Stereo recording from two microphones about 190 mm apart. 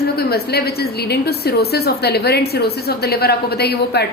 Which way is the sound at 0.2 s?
55° left (ahead or behind).